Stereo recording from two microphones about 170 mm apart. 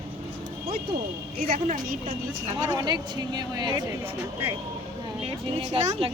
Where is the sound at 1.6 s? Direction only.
50° right (ahead or behind).